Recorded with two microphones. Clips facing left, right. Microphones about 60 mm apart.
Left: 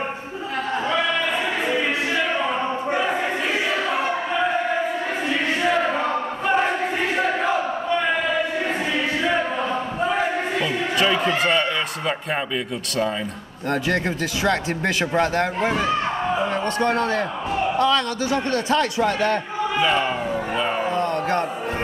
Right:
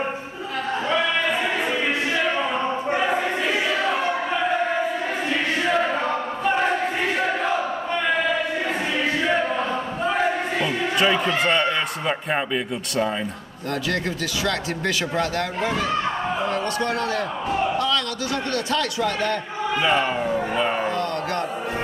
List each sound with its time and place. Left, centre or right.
6.0 s a sound: centre
11.0 s speech: centre
13.7 s a man's voice: left
19.8 s speech: centre
20.9 s music: left